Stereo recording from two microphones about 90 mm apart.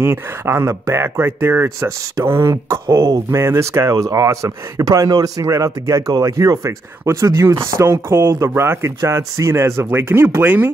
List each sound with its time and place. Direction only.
0.0 s speech: 30° right (ahead or behind)